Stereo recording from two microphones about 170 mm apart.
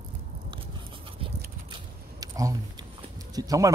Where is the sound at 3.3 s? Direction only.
20° right (ahead or behind).